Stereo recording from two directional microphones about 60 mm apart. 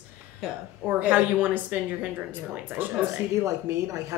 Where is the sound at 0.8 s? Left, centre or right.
Right.